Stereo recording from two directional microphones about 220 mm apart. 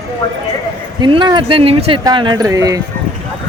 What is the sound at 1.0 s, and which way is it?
Speech, 20° right (ahead or behind).